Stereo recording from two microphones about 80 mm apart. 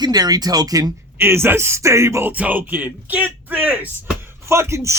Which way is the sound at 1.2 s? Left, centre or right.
Right.